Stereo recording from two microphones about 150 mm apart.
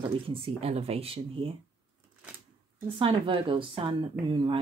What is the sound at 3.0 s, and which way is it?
Speech, 35° right (ahead or behind).